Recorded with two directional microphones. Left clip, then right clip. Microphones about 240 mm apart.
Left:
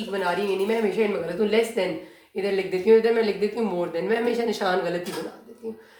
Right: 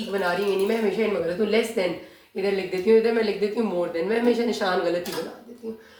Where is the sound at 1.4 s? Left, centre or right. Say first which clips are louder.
Left 2 dB; left.